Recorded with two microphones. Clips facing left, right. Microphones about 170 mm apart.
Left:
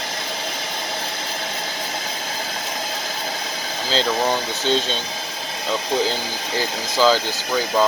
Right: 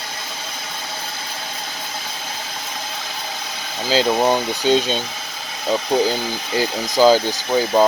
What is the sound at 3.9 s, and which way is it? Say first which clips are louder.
Speech: right 4 dB; 10° right (ahead or behind).